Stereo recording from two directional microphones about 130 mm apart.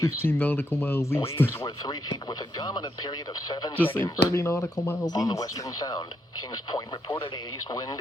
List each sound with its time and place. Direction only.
0.2 s speech: 15° left (ahead or behind)
1.6 s speech: 35° left (ahead or behind)
3.8 s speech: 15° left (ahead or behind)